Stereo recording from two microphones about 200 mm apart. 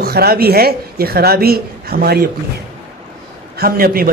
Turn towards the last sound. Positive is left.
turn(degrees=-45)  # may be behind; listen again after turning